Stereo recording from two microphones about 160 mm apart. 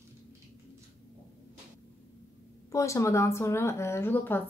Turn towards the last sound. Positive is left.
turn(degrees=10)  # may be behind; listen again after turning